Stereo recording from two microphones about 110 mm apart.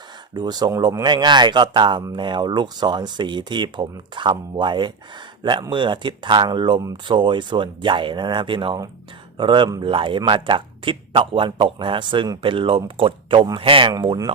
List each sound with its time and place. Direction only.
0.3 s speech: 40° right (ahead or behind)
9.8 s speech: 50° right (ahead or behind)
13.9 s speech: 40° right (ahead or behind)